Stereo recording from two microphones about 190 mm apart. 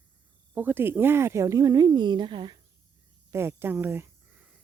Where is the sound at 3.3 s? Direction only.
10° right (ahead or behind).